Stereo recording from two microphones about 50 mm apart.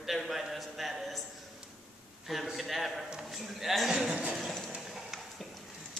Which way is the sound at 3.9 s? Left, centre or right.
Centre.